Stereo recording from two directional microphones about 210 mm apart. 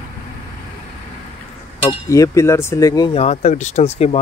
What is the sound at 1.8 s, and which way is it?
Speech, 15° left (ahead or behind).